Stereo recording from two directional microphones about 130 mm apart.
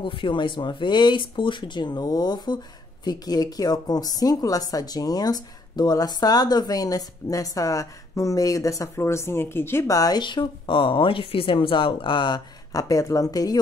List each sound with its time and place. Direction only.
0.0 s speech: 40° left (ahead or behind)